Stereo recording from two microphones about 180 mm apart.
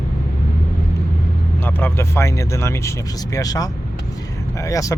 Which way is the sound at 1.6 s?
10° left (ahead or behind).